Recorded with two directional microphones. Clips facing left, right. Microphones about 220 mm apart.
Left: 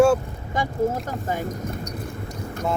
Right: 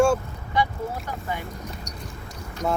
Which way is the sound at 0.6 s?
45° left (ahead or behind).